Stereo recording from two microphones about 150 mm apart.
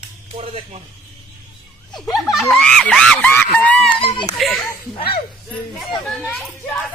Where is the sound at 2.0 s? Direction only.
Centre (ahead or behind).